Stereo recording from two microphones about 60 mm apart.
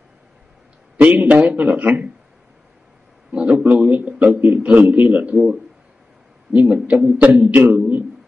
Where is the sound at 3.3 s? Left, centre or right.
Centre.